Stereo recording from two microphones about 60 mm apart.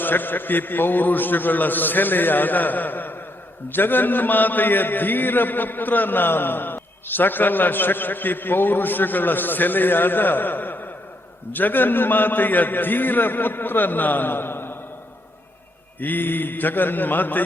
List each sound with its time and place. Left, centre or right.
0.0 s a man's voice: left
16.0 s a man's voice: left